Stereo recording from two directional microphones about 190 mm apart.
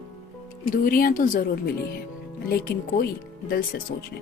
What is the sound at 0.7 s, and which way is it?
Speech, 50° left (ahead or behind).